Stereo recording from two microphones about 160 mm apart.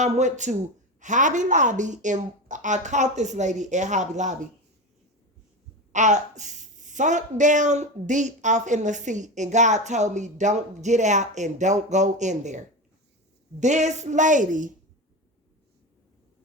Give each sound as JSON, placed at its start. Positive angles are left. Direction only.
{"t": 0.0, "sound": "speech", "side_deg": -50}
{"t": 5.9, "sound": "speech", "side_deg": -50}